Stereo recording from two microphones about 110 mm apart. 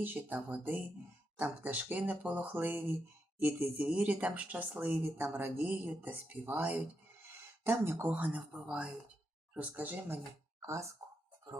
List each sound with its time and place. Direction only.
0.0 s speech: 15° right (ahead or behind)
10.6 s speech: 25° right (ahead or behind)